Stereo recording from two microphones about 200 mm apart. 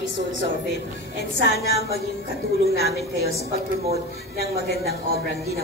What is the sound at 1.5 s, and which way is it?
Speech, 55° left (ahead or behind).